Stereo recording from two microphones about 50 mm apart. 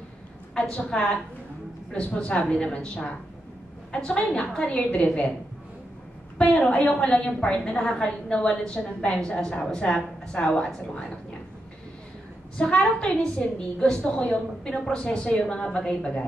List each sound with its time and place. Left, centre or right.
0.6 s a woman's voice: centre
2.1 s a woman's voice: left
6.3 s a woman's voice: left
12.5 s a woman's voice: centre